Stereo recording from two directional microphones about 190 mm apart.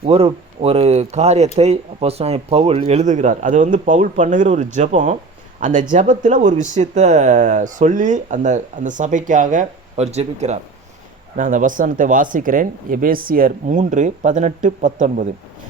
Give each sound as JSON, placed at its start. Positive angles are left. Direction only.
{"t": 0.0, "sound": "speech", "side_deg": -30}